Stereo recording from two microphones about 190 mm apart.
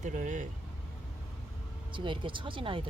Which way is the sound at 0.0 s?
40° right (ahead or behind).